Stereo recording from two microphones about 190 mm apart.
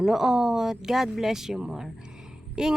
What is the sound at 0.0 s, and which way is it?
Speech, centre (ahead or behind).